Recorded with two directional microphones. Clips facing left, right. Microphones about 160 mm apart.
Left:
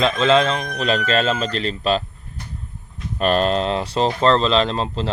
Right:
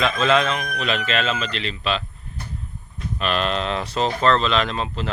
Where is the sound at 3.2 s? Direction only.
40° left (ahead or behind).